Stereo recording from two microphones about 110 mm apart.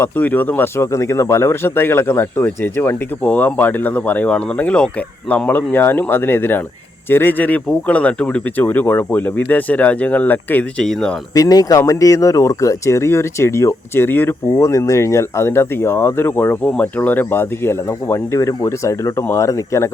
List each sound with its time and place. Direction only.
0.0 s speech: 15° left (ahead or behind)
11.3 s speech: 35° left (ahead or behind)